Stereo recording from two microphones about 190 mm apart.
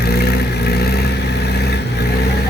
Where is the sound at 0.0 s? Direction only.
55° left (ahead or behind).